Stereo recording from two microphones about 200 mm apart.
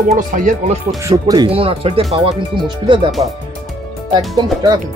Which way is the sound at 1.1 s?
20° right (ahead or behind).